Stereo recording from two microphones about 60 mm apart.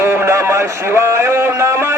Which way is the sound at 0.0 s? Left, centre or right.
Right.